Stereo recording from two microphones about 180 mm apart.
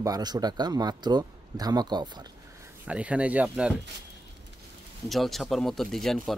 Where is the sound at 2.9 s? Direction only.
5° right (ahead or behind).